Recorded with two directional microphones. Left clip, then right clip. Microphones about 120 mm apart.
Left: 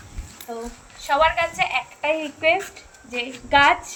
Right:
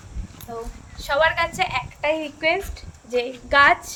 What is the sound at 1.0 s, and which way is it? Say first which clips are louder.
A woman's voice: left 1 dB; 30° right (ahead or behind).